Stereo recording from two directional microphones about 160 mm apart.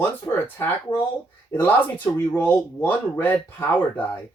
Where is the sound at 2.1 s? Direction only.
15° left (ahead or behind).